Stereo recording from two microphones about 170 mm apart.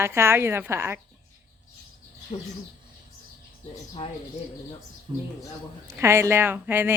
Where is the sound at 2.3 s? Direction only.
40° left (ahead or behind).